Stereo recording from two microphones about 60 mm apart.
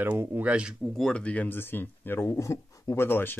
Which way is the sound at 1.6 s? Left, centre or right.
Left.